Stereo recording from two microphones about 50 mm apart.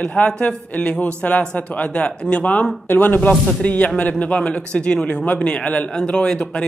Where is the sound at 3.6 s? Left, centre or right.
Left.